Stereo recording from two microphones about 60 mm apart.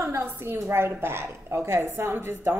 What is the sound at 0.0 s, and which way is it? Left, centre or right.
A woman's voice, right.